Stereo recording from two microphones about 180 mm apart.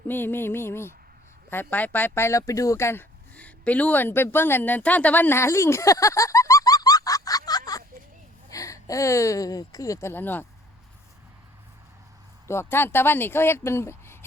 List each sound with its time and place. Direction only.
0.1 s speech: 10° left (ahead or behind)
12.5 s speech: 15° left (ahead or behind)